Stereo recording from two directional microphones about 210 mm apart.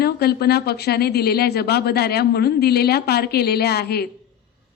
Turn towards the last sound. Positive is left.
turn(degrees=50)  # may be behind; listen again after turning